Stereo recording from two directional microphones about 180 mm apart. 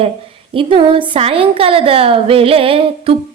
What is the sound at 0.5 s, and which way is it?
A woman's voice, 30° right (ahead or behind).